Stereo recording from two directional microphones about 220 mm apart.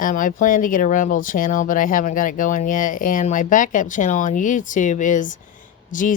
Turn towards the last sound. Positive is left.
turn(degrees=35)  # may be behind; listen again after turning